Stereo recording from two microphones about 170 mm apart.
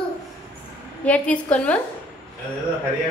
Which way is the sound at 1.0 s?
10° left (ahead or behind).